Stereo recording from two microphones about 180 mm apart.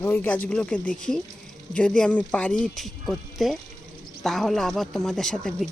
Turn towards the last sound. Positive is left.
turn(degrees=5)  # may be behind; listen again after turning